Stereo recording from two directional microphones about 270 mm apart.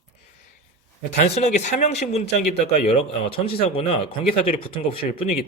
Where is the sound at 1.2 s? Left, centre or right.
Left.